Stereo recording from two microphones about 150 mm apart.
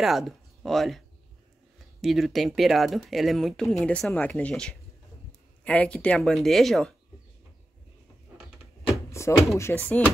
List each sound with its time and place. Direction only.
0.0 s speech: centre (ahead or behind)
9.3 s speech: 15° left (ahead or behind)